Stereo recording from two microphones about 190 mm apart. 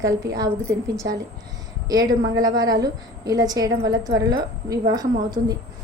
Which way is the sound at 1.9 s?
20° right (ahead or behind).